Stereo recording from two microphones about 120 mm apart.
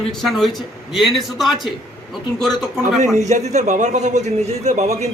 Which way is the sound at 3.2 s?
75° right (ahead or behind).